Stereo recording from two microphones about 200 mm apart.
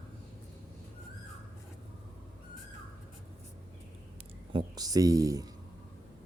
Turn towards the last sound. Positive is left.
turn(degrees=-15)  # may be behind; listen again after turning